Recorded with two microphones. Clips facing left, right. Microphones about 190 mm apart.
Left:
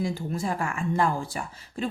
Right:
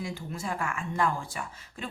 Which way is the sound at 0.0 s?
35° left (ahead or behind).